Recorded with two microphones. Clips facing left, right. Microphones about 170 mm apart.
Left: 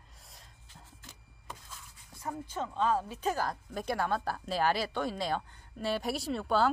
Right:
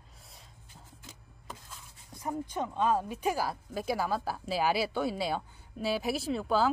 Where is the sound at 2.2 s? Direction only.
15° right (ahead or behind).